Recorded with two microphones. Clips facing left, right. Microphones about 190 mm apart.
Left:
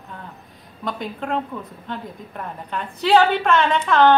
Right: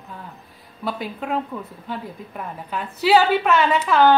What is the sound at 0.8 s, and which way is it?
A woman's voice, 5° right (ahead or behind).